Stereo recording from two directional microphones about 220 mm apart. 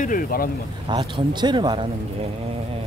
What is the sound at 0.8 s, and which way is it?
Speech, 20° right (ahead or behind).